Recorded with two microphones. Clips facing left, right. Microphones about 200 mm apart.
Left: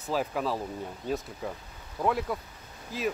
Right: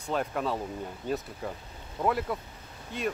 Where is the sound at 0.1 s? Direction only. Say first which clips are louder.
Even; centre (ahead or behind).